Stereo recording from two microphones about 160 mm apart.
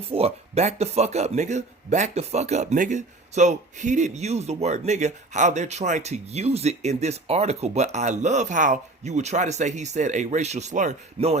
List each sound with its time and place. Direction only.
0.1 s speech: 40° right (ahead or behind)